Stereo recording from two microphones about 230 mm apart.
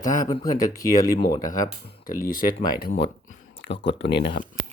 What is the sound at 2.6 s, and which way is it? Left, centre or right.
Speech, left.